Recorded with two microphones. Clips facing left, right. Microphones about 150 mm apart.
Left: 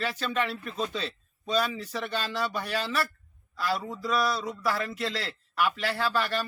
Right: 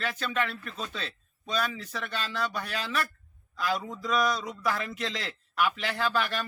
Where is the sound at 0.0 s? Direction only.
10° left (ahead or behind).